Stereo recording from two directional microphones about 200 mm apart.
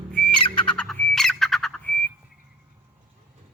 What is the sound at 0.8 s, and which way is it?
Frog, 5° left (ahead or behind).